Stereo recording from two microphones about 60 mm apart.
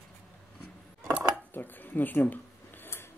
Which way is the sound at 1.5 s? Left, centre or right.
Left.